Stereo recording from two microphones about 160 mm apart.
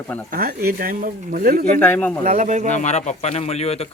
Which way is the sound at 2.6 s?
45° left (ahead or behind).